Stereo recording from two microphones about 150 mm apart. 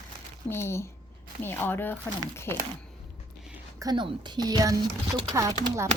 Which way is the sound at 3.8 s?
30° right (ahead or behind).